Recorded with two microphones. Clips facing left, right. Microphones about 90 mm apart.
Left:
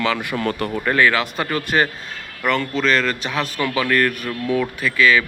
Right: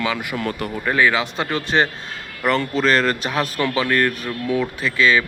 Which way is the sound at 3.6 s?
20° right (ahead or behind).